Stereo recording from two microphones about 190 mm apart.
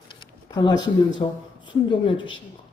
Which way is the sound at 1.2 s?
30° left (ahead or behind).